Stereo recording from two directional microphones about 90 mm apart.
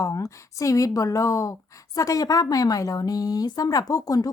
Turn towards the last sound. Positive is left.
turn(degrees=40)  # may be behind; listen again after turning